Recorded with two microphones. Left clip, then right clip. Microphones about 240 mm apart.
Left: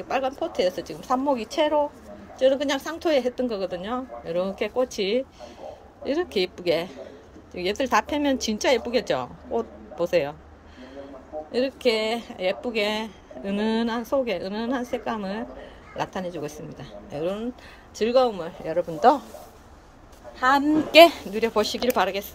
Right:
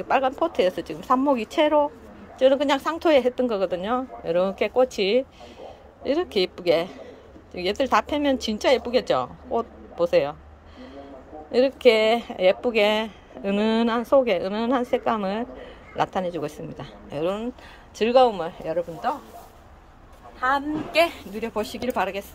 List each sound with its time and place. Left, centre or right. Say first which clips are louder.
0.1 s a woman's voice: right 4 dB; centre
11.5 s speech: right 6 dB; centre
20.3 s a woman's voice: left 3 dB; left
21.3 s a woman's voice: left 5 dB; centre